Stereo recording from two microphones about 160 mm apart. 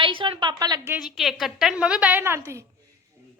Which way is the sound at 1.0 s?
Centre (ahead or behind).